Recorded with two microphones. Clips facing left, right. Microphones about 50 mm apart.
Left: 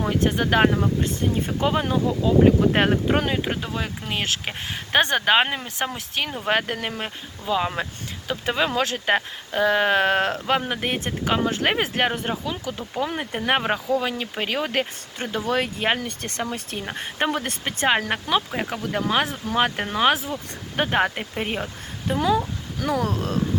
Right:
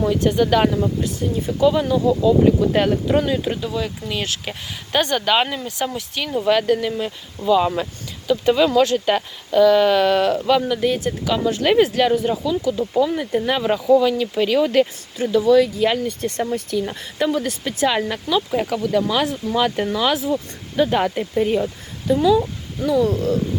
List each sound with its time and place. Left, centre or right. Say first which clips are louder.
0.0 s speech: right 5 dB; left
0.7 s speech: right 2 dB; left
7.4 s speech: right 7 dB; centre; by 13.7 s left
14.0 s speech: right 8 dB; left
15.2 s speech: right 10 dB; left
16.0 s speech: right 6 dB; left
16.8 s speech: right 3 dB; left
17.6 s speech: right 2 dB; left
18.5 s speech: right 6 dB; left
18.9 s speech: right 2 dB; left
22.9 s speech: right 6 dB; left